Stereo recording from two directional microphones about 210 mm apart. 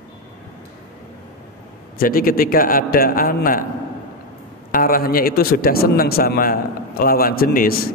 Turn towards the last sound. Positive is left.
turn(degrees=45)  # may be behind; listen again after turning